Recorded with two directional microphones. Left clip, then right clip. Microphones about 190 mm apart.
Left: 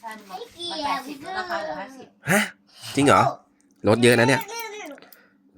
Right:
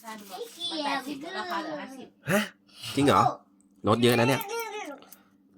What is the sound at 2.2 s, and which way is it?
Speech, 20° left (ahead or behind).